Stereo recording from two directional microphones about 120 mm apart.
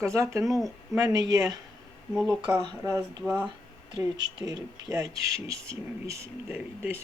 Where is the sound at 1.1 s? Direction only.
30° right (ahead or behind).